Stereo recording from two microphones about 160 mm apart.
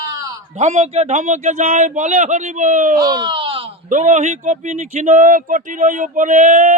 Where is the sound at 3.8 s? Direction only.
50° right (ahead or behind).